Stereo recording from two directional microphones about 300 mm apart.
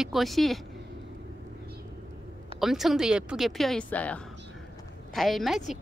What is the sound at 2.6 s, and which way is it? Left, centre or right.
Speech, centre.